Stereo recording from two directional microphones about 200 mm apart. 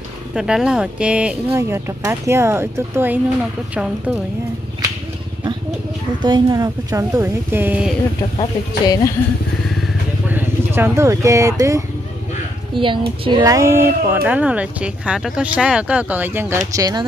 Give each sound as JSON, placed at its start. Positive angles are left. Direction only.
{"t": 0.3, "sound": "speech", "side_deg": -5}
{"t": 6.2, "sound": "speech", "side_deg": -20}
{"t": 8.4, "sound": "speech", "side_deg": 20}
{"t": 10.2, "sound": "a woman's voice", "side_deg": -10}